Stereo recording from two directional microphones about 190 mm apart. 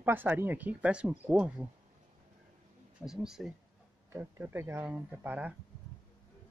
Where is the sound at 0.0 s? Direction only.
10° right (ahead or behind).